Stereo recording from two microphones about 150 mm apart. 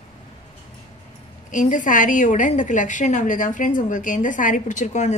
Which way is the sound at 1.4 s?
55° left (ahead or behind).